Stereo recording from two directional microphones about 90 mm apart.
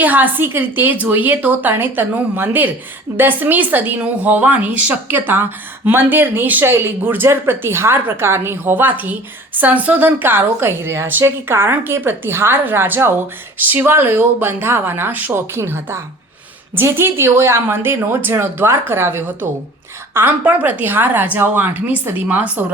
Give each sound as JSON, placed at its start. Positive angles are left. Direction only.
{"t": 0.0, "sound": "a woman's voice", "side_deg": -20}